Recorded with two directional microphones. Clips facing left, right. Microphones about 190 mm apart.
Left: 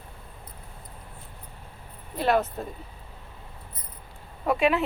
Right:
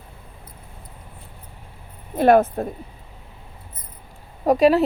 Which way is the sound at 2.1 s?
50° right (ahead or behind).